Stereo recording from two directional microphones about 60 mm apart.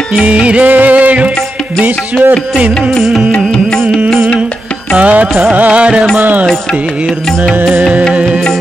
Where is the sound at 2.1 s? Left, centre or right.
Centre.